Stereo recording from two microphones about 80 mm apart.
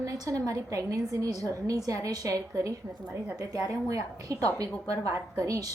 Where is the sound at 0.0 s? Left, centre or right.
Right.